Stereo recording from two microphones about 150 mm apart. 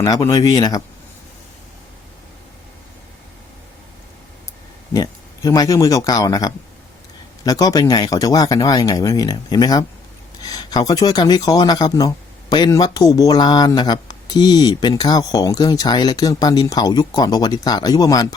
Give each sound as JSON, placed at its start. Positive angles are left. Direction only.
{"t": 0.0, "sound": "speech", "side_deg": 20}
{"t": 4.9, "sound": "speech", "side_deg": 25}